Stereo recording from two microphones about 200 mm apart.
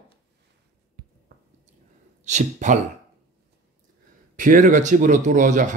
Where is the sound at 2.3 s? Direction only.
35° right (ahead or behind).